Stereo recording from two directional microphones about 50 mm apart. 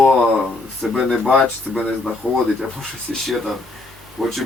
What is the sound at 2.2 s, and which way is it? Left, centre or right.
Speech, centre.